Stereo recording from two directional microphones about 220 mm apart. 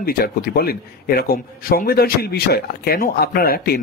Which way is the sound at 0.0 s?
45° left (ahead or behind).